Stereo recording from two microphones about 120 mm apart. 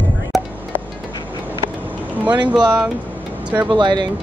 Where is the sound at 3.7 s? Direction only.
40° right (ahead or behind).